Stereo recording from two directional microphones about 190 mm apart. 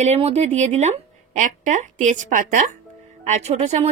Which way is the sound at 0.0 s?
35° right (ahead or behind).